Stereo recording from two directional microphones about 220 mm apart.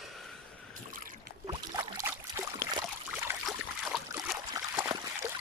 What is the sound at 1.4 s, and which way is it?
Boat, 20° right (ahead or behind).